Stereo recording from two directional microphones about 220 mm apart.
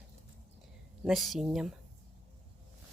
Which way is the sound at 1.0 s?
Centre (ahead or behind).